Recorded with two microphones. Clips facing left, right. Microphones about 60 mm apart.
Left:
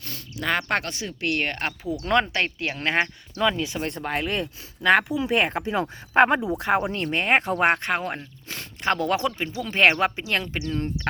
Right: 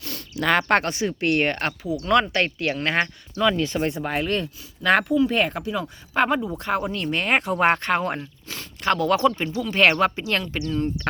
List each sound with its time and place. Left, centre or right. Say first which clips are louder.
0.0 s a sound: right 4 dB; right
0.8 s speech: right 6 dB; right
1.5 s speech: right 4 dB; centre
2.0 s speech: right 2 dB; left; by 3.8 s centre
3.8 s speech: right 3 dB; centre
4.3 s speech: right 2 dB; centre
5.5 s speech: left 2 dB; left
6.1 s speech: left 3 dB; centre
7.6 s speech: right 2 dB; centre
8.0 s speech: right 4 dB; centre
8.4 s speech: right 1 dB; left